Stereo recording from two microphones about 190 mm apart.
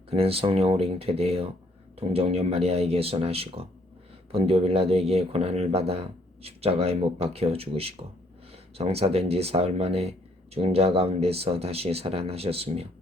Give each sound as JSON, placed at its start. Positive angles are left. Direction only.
{"t": 0.1, "sound": "speech", "side_deg": -30}